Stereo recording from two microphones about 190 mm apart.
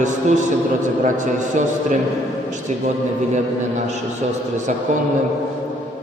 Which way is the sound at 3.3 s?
35° right (ahead or behind).